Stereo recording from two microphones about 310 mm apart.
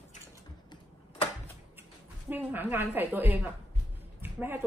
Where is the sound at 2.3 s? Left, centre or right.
Centre.